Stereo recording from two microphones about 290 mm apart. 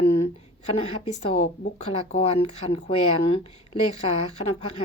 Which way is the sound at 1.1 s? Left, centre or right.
Left.